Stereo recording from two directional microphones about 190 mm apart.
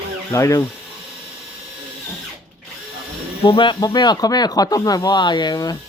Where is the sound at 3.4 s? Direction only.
25° left (ahead or behind).